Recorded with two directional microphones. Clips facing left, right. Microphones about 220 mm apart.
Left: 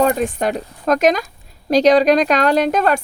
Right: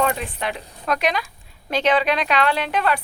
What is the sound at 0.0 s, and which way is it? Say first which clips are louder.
Speech: left 7 dB; 40° left (ahead or behind).